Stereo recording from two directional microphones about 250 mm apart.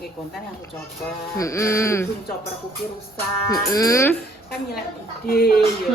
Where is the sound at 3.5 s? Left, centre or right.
Centre.